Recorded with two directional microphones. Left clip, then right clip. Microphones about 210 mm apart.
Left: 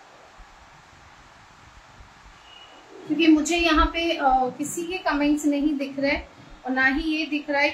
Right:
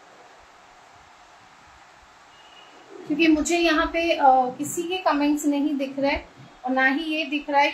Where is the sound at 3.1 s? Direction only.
10° right (ahead or behind).